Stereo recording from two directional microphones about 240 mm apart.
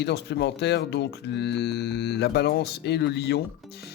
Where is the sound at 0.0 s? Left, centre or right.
Left.